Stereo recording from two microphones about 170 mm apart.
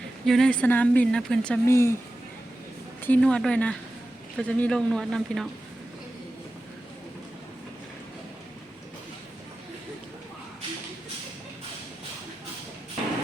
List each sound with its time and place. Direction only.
0.3 s speech: 5° left (ahead or behind)
1.6 s speech: 15° left (ahead or behind)
3.0 s speech: 10° left (ahead or behind)